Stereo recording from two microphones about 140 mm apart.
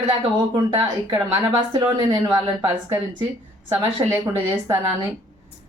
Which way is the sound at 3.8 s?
25° right (ahead or behind).